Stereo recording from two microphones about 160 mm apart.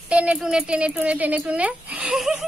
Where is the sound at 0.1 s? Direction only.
5° right (ahead or behind).